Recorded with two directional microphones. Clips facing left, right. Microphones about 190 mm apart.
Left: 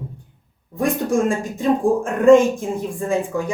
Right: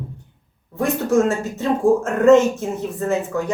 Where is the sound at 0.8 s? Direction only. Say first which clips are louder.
Right 1 dB; 15° left (ahead or behind).